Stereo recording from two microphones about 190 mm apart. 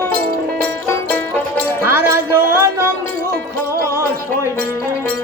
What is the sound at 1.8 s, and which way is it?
Music, 15° right (ahead or behind).